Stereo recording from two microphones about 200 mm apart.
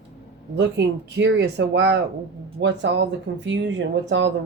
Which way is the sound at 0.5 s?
60° right (ahead or behind).